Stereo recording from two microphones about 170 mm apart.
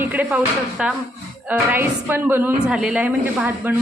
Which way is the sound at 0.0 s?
10° right (ahead or behind).